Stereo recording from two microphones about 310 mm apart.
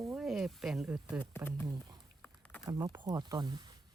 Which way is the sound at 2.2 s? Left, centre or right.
Centre.